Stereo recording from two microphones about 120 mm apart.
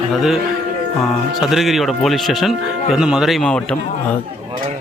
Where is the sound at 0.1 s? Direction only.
Centre (ahead or behind).